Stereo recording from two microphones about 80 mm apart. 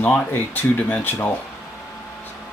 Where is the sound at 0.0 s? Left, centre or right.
Left.